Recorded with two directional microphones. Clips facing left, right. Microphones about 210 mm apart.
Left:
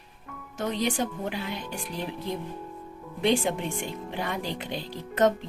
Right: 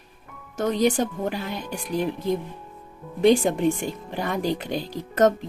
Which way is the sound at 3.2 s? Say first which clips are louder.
Right 7 dB; 45° right (ahead or behind).